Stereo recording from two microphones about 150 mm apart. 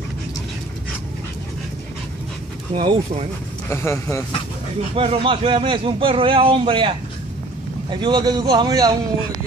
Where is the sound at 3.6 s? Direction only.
15° left (ahead or behind).